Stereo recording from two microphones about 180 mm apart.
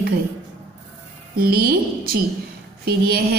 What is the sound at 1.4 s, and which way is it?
Speech, 60° right (ahead or behind).